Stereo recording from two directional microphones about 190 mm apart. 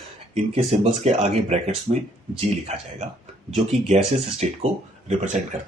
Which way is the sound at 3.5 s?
35° right (ahead or behind).